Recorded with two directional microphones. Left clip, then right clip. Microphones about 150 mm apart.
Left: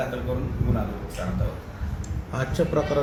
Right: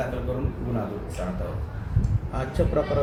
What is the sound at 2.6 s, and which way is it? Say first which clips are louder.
Speech: left 1 dB; 70° left (ahead or behind).